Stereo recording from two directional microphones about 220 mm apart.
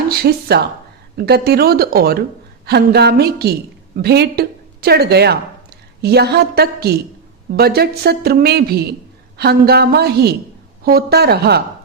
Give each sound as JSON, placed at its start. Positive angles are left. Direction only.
{"t": 0.2, "sound": "a woman's voice", "side_deg": -45}